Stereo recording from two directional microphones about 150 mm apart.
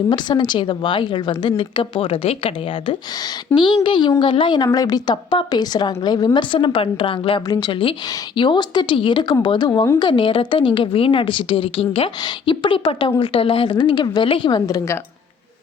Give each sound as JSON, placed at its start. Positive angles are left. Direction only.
{"t": 0.1, "sound": "a woman's voice", "side_deg": 30}
{"t": 3.5, "sound": "speech", "side_deg": 15}
{"t": 3.8, "sound": "a woman's voice", "side_deg": 30}